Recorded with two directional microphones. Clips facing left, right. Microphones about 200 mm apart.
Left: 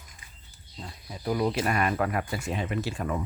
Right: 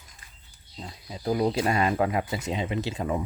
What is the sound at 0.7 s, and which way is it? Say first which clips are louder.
Speech: right 2 dB; 20° right (ahead or behind).